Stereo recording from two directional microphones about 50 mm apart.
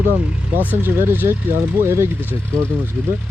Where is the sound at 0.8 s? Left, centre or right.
Right.